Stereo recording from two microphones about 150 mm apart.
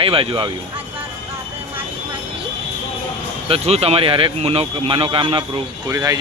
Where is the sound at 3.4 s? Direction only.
40° right (ahead or behind).